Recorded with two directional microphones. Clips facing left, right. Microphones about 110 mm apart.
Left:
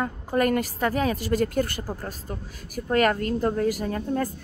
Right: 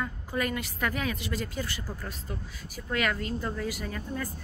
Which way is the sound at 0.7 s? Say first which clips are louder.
Left 7 dB; 35° left (ahead or behind).